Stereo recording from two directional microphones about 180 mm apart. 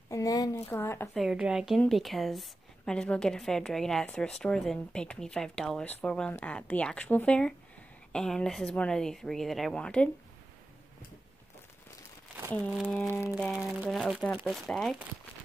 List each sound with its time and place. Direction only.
0.1 s speech: 20° left (ahead or behind)
1.1 s a woman's voice: 5° right (ahead or behind)
13.3 s a woman's voice: 5° right (ahead or behind)